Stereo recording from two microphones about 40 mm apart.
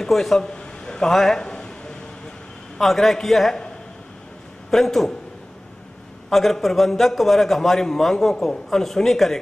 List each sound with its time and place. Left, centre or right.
0.0 s a man's voice: centre
0.4 s a man's voice: centre
1.4 s a sound: centre
2.8 s a man's voice: centre
4.6 s speech: centre
6.3 s a man's voice: centre